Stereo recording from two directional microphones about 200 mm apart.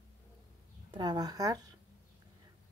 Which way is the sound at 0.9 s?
20° right (ahead or behind).